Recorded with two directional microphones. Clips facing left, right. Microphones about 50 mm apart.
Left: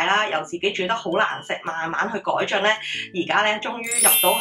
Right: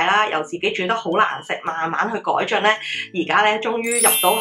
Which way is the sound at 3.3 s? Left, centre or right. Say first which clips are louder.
Right 4 dB; right.